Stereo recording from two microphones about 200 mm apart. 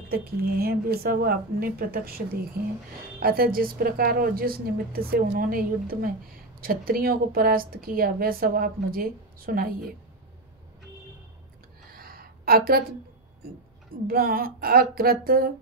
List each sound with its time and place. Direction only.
0.1 s a woman's voice: 50° right (ahead or behind)
11.9 s a sound: 50° right (ahead or behind)
14.0 s a woman's voice: 45° right (ahead or behind)